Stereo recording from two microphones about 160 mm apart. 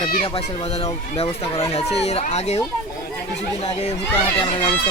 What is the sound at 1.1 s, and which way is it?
Speech, 40° left (ahead or behind).